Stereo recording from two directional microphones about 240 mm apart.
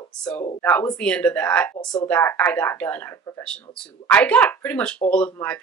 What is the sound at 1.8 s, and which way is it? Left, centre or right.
Speech, centre.